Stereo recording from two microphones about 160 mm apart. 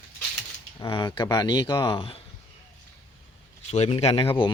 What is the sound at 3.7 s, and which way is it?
Speech, 40° left (ahead or behind).